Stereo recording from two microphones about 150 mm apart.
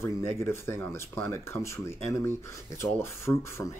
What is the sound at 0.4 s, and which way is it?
Speech, 15° left (ahead or behind).